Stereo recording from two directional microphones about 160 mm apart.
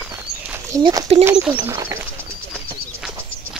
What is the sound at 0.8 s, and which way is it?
Speech, 30° right (ahead or behind).